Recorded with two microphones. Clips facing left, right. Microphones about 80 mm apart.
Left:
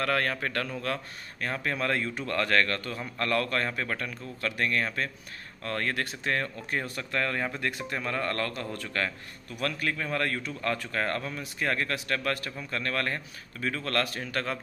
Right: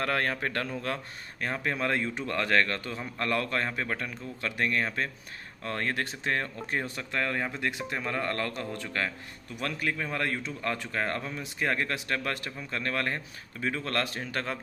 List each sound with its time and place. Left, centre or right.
0.0 s a man's voice: right